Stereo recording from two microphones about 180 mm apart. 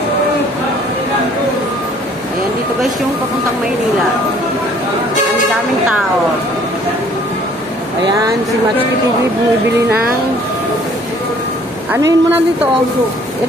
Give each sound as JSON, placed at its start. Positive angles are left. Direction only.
{"t": 11.9, "sound": "speech", "side_deg": -20}